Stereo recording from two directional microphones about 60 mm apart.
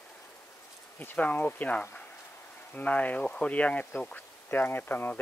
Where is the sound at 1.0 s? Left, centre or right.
Left.